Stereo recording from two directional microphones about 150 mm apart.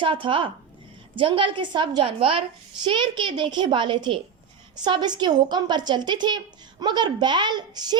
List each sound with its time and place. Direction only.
0.0 s a child's voice: 35° right (ahead or behind)